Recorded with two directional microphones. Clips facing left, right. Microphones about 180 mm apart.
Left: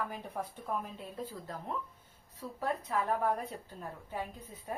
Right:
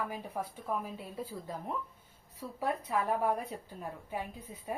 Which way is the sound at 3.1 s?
10° right (ahead or behind).